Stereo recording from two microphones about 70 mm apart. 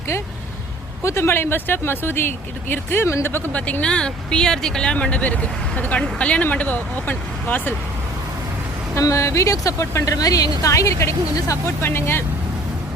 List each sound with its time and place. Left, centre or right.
1.0 s speech: left
3.5 s speech: centre
9.0 s speech: left
10.2 s speech: left
11.8 s speech: left